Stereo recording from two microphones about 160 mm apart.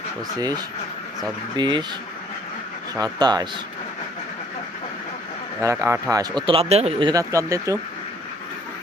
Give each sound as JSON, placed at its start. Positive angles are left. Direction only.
{"t": 0.3, "sound": "speech", "side_deg": -25}
{"t": 2.9, "sound": "speech", "side_deg": -25}
{"t": 5.5, "sound": "speech", "side_deg": -15}
{"t": 7.1, "sound": "speech", "side_deg": -20}